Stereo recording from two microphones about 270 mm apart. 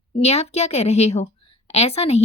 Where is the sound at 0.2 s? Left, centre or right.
Left.